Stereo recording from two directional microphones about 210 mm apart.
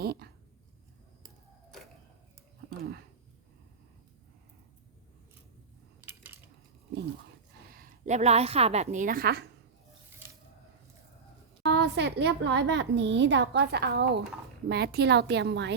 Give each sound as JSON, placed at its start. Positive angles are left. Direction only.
{"t": 0.0, "sound": "speech", "side_deg": -50}
{"t": 7.7, "sound": "a woman's voice", "side_deg": -40}
{"t": 11.7, "sound": "a woman's voice", "side_deg": -50}